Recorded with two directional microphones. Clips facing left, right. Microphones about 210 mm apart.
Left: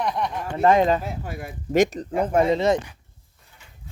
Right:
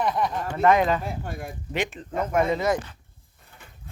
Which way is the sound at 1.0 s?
5° left (ahead or behind).